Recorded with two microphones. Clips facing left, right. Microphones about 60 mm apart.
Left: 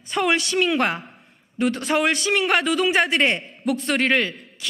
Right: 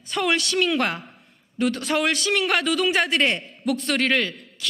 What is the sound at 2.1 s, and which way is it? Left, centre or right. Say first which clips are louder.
A man's voice: left 2 dB; centre.